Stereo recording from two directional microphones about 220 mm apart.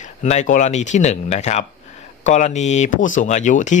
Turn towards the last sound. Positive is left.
turn(degrees=35)  # may be behind; listen again after turning